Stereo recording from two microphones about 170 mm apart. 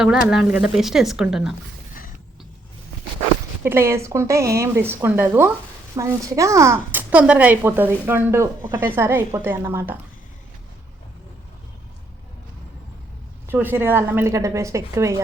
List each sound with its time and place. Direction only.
0.0 s speech: 5° right (ahead or behind)
3.6 s speech: 15° right (ahead or behind)
13.5 s speech: 10° right (ahead or behind)